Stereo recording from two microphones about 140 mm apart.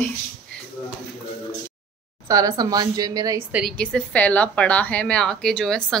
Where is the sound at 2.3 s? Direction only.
25° right (ahead or behind).